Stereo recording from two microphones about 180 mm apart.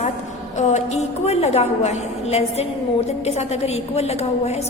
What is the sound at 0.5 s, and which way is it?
A woman's voice, 40° left (ahead or behind).